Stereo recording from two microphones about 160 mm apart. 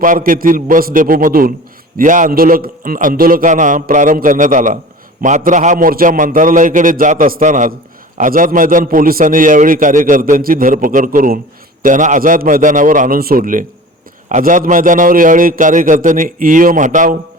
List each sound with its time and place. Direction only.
0.0 s a man's voice: 55° right (ahead or behind)